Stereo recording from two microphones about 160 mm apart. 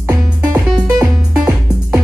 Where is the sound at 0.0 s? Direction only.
20° right (ahead or behind).